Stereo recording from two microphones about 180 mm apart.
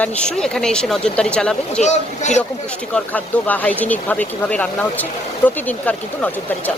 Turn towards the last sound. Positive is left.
turn(degrees=10)  # may be behind; listen again after turning